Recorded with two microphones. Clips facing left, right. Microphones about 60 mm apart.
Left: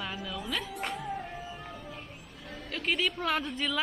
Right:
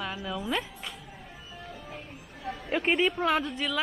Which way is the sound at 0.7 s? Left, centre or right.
Left.